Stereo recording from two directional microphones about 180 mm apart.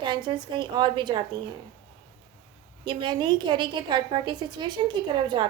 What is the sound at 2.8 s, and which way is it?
A woman's voice, 25° right (ahead or behind).